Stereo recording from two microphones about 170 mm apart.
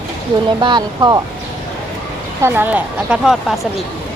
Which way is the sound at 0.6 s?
25° right (ahead or behind).